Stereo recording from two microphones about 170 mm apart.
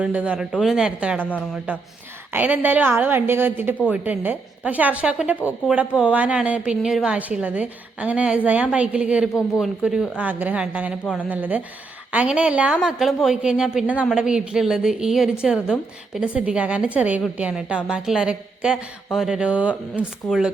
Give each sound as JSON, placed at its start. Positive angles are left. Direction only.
{"t": 0.0, "sound": "a woman's voice", "side_deg": -5}
{"t": 1.2, "sound": "speech", "side_deg": 10}
{"t": 1.7, "sound": "a woman's voice", "side_deg": -10}